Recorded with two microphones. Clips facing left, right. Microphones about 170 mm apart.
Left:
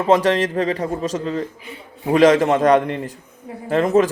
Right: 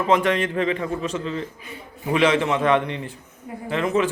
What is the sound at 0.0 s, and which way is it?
A man's voice, 35° left (ahead or behind).